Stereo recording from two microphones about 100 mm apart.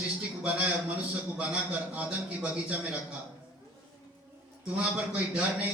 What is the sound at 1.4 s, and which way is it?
A man's voice, 10° right (ahead or behind).